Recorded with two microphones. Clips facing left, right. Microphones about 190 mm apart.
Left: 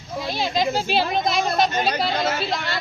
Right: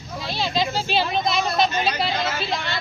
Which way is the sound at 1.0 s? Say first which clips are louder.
Left 1 dB; 50° left (ahead or behind).